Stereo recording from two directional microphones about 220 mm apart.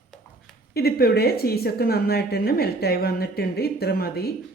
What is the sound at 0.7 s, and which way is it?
A woman's voice, 45° left (ahead or behind).